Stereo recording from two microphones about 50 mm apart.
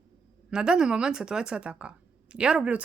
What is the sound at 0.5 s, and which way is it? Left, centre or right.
Speech, centre.